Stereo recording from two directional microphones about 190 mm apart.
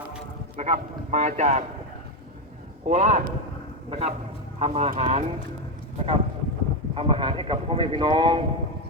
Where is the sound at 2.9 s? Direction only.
35° right (ahead or behind).